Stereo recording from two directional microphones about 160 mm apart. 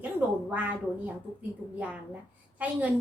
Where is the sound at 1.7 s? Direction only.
10° right (ahead or behind).